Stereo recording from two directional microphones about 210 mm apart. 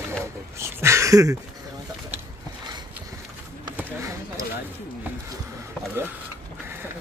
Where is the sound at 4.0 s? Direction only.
15° right (ahead or behind).